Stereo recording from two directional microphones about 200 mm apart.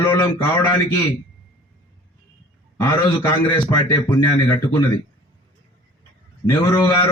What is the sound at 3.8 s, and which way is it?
Speech, 25° left (ahead or behind).